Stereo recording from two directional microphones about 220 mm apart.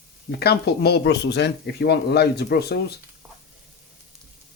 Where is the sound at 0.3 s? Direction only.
45° left (ahead or behind).